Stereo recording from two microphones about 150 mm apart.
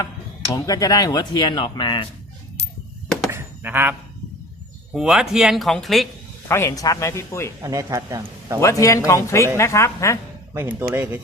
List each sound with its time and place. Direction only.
0.5 s speech: 25° left (ahead or behind)
3.3 s a sound: 15° right (ahead or behind)
4.9 s speech: 5° right (ahead or behind)
6.5 s speech: 20° left (ahead or behind)
7.6 s a man's voice: 20° right (ahead or behind)
8.6 s speech: 20° left (ahead or behind)
10.5 s speech: 15° right (ahead or behind)